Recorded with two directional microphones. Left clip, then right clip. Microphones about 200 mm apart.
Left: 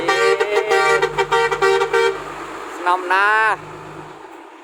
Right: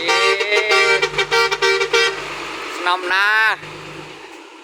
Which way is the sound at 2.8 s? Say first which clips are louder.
Left 1 dB; 5° left (ahead or behind).